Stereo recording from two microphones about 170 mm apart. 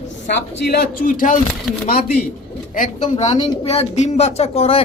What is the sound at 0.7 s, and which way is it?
Speech, 60° left (ahead or behind).